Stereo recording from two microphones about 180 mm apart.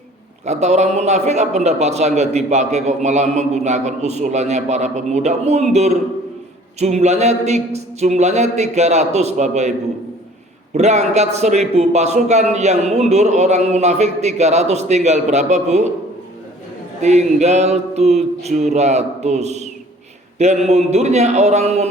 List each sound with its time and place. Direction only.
0.4 s a man's voice: 40° right (ahead or behind)
10.8 s a man's voice: 40° right (ahead or behind)
17.0 s a man's voice: 40° right (ahead or behind)